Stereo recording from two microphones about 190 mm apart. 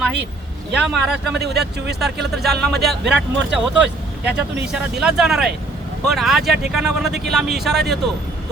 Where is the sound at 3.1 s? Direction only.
70° right (ahead or behind).